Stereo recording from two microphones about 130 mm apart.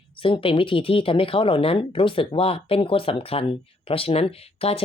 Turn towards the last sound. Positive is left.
turn(degrees=50)  # may be behind; listen again after turning